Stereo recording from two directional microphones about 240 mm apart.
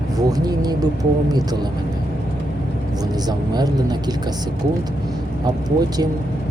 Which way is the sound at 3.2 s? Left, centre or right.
Centre.